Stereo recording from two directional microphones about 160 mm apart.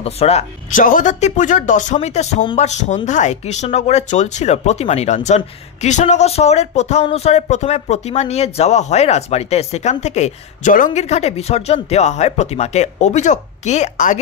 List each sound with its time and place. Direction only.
0.0 s speech: 40° left (ahead or behind)